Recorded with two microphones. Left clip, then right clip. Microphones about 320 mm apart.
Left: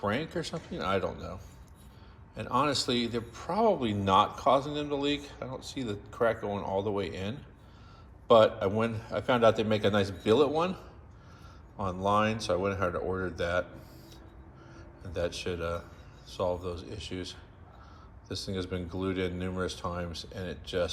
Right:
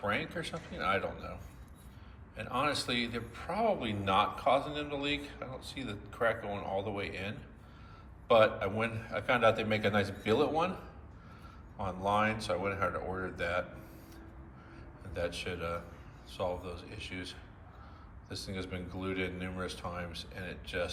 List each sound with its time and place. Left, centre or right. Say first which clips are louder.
0.0 s a man's voice: left 3 dB; centre
12.0 s a man's voice: left 3 dB; centre
15.0 s a man's voice: left 4 dB; centre